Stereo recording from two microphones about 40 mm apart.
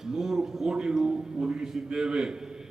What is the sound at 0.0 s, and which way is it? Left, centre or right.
A man's voice, centre.